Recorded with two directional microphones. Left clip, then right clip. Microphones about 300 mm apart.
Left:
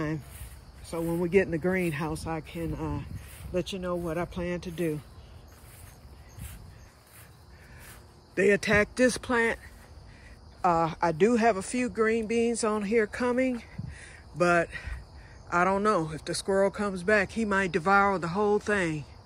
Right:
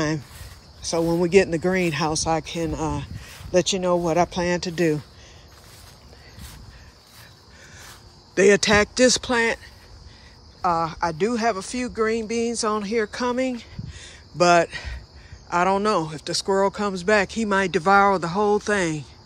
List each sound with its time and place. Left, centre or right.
0.8 s speech: centre
8.4 s speech: centre
10.6 s speech: centre